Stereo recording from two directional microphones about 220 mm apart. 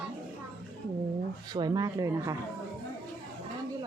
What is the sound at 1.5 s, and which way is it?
Speech, 15° right (ahead or behind).